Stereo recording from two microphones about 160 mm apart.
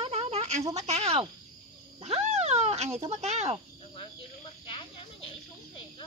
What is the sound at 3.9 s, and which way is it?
Snake, 35° left (ahead or behind).